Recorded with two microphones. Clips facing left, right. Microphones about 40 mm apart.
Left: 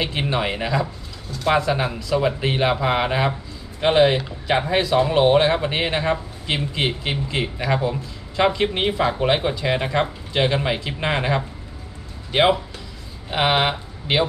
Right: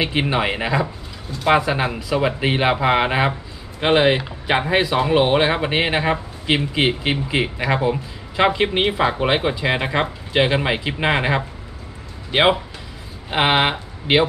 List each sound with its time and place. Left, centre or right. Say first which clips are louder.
0.0 s speech: right 3 dB; centre